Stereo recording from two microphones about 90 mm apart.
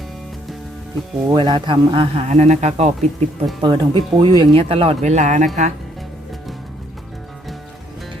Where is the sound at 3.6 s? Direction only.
60° right (ahead or behind); by 4.9 s 90° right.